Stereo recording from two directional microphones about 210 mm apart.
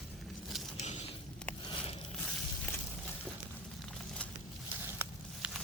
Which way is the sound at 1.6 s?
25° left (ahead or behind).